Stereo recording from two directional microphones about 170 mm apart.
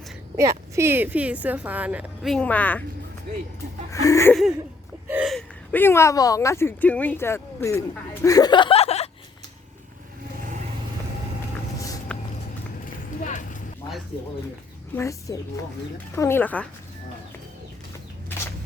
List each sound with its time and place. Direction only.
0.8 s a woman's voice: 10° right (ahead or behind)
2.3 s speech: 10° left (ahead or behind)
3.9 s speech: 20° left (ahead or behind)
5.0 s a sound: 10° right (ahead or behind)
5.3 s a sound: 5° left (ahead or behind)
5.8 s speech: 15° left (ahead or behind); by 9.0 s 35° left (ahead or behind)
12.1 s a sound: 5° left (ahead or behind)
12.8 s clip-clop: 50° left (ahead or behind)
14.9 s speech: 15° left (ahead or behind)